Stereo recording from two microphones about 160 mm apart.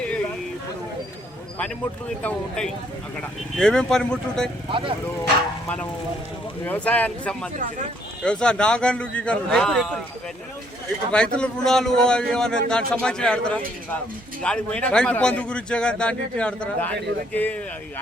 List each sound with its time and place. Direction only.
2.2 s a man's voice: 5° left (ahead or behind)
4.7 s speech: 30° right (ahead or behind)
5.6 s a man's voice: 10° left (ahead or behind)
7.5 s speech: 55° right (ahead or behind)
8.2 s a man's voice: 5° left (ahead or behind)
11.1 s a man's voice: 5° left (ahead or behind)